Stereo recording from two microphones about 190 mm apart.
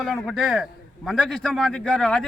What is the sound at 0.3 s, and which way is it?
A man's voice, 5° right (ahead or behind).